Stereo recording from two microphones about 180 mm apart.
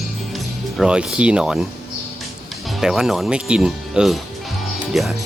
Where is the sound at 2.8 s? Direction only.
Centre (ahead or behind).